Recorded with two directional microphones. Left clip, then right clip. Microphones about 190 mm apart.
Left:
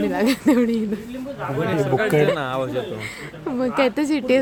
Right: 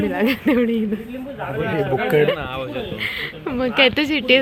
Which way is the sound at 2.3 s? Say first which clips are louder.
Left 3 dB; 50° left (ahead or behind).